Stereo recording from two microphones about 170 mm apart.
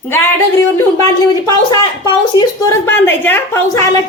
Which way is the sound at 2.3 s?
20° left (ahead or behind).